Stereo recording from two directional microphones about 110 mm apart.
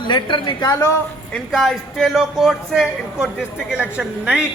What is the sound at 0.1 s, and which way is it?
Speech, 45° left (ahead or behind).